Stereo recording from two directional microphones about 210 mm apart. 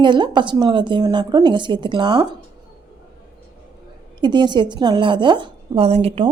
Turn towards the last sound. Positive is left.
turn(degrees=-30)  # may be behind; listen again after turning